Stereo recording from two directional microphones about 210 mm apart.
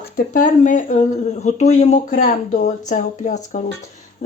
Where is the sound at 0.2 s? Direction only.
40° left (ahead or behind).